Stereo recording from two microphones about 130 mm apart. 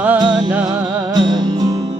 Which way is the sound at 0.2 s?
35° right (ahead or behind).